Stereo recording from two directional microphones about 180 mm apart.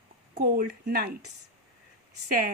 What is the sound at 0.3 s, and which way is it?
Speech, 60° right (ahead or behind).